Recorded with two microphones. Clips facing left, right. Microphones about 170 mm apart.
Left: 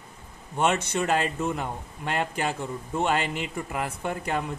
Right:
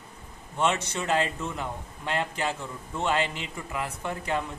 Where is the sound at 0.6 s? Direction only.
50° left (ahead or behind).